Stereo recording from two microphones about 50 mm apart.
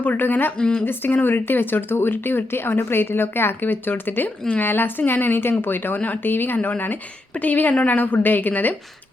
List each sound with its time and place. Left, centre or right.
0.0 s a woman's voice: left